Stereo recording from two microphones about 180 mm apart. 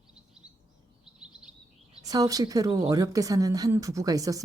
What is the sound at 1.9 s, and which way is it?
A woman's voice, 20° right (ahead or behind).